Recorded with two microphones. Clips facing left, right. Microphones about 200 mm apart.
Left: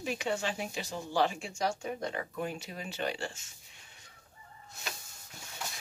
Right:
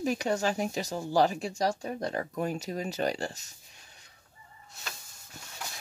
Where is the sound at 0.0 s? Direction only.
40° right (ahead or behind).